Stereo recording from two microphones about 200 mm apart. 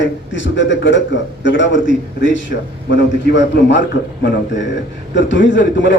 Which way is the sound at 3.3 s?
60° left (ahead or behind).